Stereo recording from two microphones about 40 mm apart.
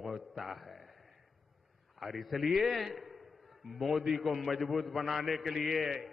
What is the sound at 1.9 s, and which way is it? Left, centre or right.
A man's voice, centre.